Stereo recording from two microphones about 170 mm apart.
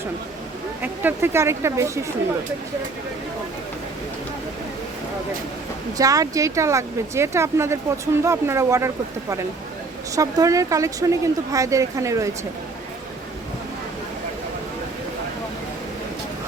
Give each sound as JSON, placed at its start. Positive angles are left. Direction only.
{"t": 0.8, "sound": "speech", "side_deg": -10}
{"t": 6.0, "sound": "speech", "side_deg": -20}
{"t": 10.2, "sound": "speech", "side_deg": -20}